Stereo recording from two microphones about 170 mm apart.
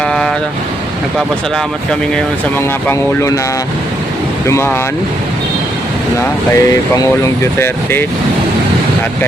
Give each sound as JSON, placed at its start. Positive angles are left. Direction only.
{"t": 0.0, "sound": "vehicle", "side_deg": 0}
{"t": 1.9, "sound": "speech", "side_deg": 5}
{"t": 4.4, "sound": "speech", "side_deg": 15}
{"t": 6.5, "sound": "speech", "side_deg": 20}